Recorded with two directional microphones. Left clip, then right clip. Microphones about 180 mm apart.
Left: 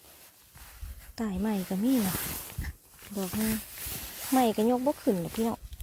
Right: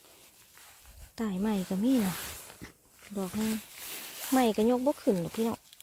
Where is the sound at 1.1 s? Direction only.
10° left (ahead or behind).